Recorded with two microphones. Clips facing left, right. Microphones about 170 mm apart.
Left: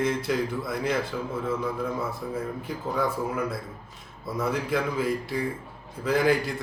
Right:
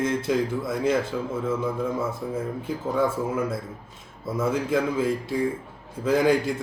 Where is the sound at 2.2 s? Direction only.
25° right (ahead or behind).